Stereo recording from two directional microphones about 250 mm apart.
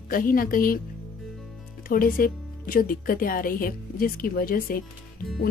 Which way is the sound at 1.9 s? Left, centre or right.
Left.